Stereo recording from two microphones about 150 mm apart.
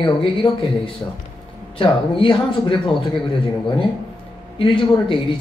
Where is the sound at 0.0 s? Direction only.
35° left (ahead or behind).